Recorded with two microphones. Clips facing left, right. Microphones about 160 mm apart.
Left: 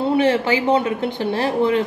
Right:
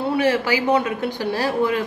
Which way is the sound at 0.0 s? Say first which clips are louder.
Left 3 dB; 25° left (ahead or behind).